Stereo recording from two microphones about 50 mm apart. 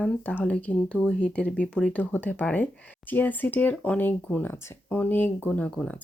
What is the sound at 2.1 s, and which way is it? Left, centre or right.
Speech, left.